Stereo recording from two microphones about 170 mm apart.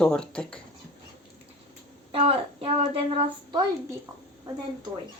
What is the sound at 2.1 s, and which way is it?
Speech, 35° right (ahead or behind).